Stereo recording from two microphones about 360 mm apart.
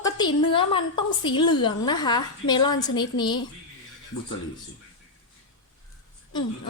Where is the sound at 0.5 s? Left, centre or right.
Centre.